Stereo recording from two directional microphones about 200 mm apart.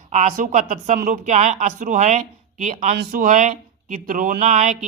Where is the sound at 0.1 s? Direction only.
35° right (ahead or behind).